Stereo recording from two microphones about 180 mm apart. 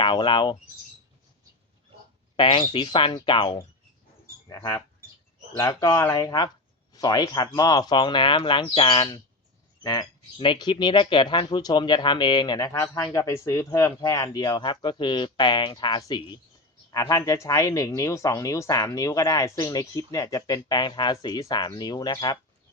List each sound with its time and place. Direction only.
0.0 s speech: 25° left (ahead or behind)
2.3 s speech: 30° left (ahead or behind)